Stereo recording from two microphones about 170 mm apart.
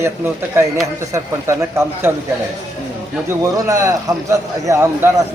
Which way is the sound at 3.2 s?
20° right (ahead or behind).